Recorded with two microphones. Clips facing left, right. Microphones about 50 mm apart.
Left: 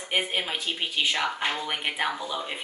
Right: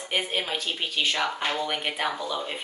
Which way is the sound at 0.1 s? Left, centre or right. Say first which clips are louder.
Even; centre.